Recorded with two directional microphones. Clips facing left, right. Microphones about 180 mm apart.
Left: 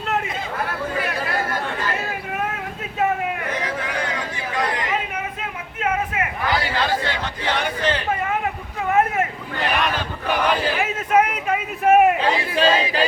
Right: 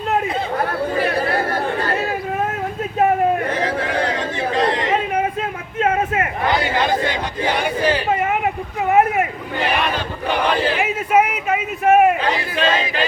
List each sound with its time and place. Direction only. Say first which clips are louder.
0.9 s chatter: right 7 dB; 35° right (ahead or behind)
3.6 s chatter: right 6 dB; 30° right (ahead or behind)
6.4 s a sound: right 3 dB; 20° right (ahead or behind)
8.9 s hubbub: right 3 dB; 15° right (ahead or behind)
9.7 s battle cry: right 2 dB; centre (ahead or behind)
10.8 s a sound: right 2 dB; 10° right (ahead or behind)
12.5 s choir: left 3 dB; 35° left (ahead or behind)